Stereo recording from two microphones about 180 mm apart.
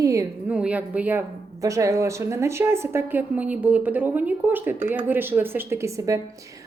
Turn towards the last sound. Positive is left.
turn(degrees=-15)  # may be behind; listen again after turning